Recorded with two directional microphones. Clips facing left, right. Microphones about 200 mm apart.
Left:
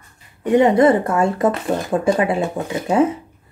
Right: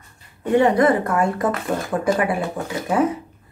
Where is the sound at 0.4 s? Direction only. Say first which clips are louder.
Left 3 dB; 15° left (ahead or behind).